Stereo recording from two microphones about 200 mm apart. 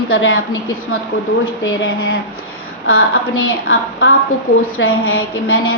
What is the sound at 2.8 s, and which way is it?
A woman's voice, 90° left.